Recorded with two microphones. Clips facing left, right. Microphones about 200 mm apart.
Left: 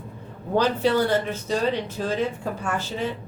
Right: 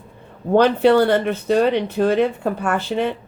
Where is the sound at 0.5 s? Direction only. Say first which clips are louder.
Right 7 dB; 65° right (ahead or behind).